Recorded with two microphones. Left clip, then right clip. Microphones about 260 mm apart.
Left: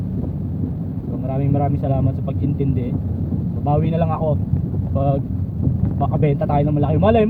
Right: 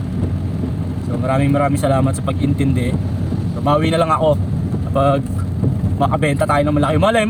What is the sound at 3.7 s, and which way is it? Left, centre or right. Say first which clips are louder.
Speech: right 6 dB; right.